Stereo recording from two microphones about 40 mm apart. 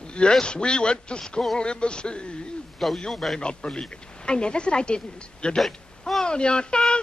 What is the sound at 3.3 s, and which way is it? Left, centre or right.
A woman's voice, left.